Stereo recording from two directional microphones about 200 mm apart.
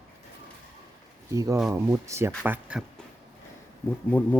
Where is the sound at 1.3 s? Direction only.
15° right (ahead or behind).